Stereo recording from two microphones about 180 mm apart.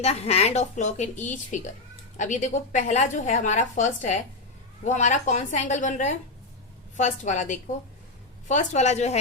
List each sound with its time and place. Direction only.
0.0 s a woman's voice: 35° left (ahead or behind)